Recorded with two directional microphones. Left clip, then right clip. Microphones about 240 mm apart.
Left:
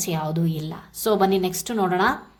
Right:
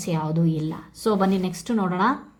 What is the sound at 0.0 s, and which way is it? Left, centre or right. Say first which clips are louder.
A woman's voice: even; centre.